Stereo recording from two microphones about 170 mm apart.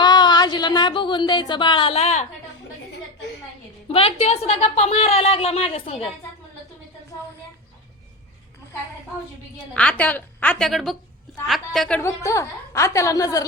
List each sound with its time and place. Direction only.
0.0 s speech: 25° left (ahead or behind)
3.9 s a woman's voice: 35° left (ahead or behind)
9.7 s a woman's voice: 5° left (ahead or behind)